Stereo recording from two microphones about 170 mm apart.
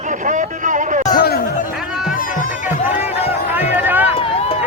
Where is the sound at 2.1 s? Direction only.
55° left (ahead or behind).